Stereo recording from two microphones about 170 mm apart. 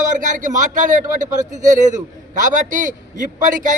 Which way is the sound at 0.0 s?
50° right (ahead or behind).